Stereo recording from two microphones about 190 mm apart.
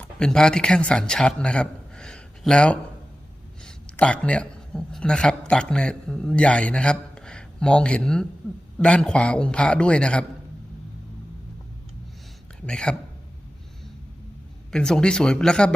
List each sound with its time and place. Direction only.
0.0 s a man's voice: 5° left (ahead or behind)
12.6 s a man's voice: 5° left (ahead or behind)
14.7 s a man's voice: 5° left (ahead or behind)